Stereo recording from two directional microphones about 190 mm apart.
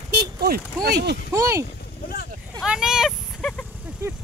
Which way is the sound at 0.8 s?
60° right (ahead or behind).